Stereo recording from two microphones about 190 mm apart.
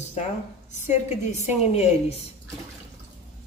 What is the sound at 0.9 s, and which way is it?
Speech, 35° left (ahead or behind).